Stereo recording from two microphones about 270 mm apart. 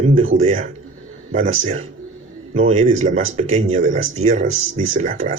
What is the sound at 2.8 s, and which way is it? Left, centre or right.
Speech, right.